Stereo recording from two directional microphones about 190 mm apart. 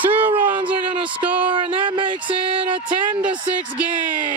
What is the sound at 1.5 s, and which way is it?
Speech, 25° right (ahead or behind).